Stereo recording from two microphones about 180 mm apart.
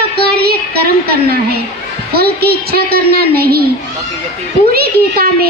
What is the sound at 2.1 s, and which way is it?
A woman's voice, 60° right (ahead or behind).